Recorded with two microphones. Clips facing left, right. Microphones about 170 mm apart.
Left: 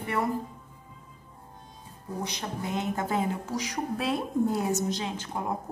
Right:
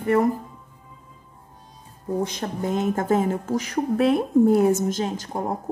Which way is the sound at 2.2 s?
50° right (ahead or behind).